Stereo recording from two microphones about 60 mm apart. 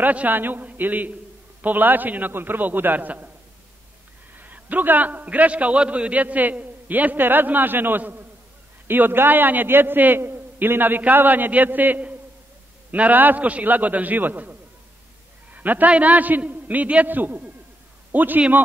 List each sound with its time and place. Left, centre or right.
0.0 s a man's voice: right
4.4 s a man's voice: right